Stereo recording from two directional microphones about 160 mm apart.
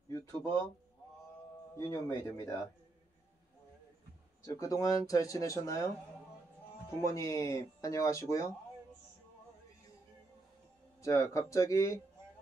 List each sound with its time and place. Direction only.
0.1 s a sound: 20° left (ahead or behind)
1.8 s speech: 20° left (ahead or behind)
4.4 s speech: 20° left (ahead or behind)
7.0 s speech: 20° left (ahead or behind)
11.0 s speech: 20° left (ahead or behind)